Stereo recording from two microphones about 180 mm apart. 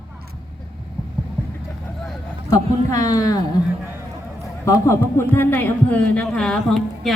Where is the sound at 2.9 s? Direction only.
20° left (ahead or behind).